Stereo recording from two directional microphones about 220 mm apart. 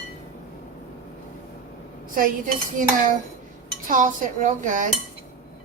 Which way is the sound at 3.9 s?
35° right (ahead or behind).